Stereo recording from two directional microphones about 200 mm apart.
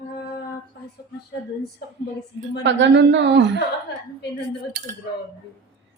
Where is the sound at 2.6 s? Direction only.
60° right (ahead or behind).